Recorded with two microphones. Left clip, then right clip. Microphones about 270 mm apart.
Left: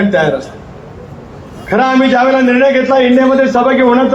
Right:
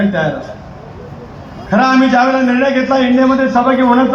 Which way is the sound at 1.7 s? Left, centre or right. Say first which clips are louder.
Left 1 dB; left.